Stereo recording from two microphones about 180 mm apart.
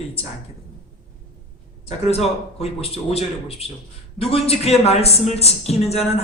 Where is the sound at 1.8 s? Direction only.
35° left (ahead or behind).